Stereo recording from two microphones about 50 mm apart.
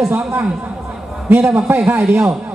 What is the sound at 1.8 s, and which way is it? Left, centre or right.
Speech, right.